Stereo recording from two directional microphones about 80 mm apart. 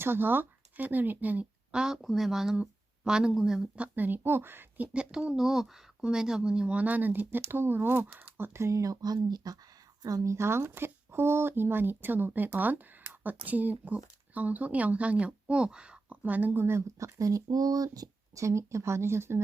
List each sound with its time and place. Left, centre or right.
0.0 s speech: right
1.7 s speech: centre
3.9 s speech: right
4.9 s a woman's voice: centre; by 10.3 s right
10.3 s speech: right
13.0 s a sound: right
13.4 s speech: right